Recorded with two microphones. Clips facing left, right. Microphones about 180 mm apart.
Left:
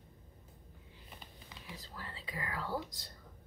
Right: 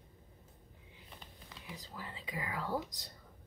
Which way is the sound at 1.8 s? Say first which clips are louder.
Right 2 dB; 15° right (ahead or behind).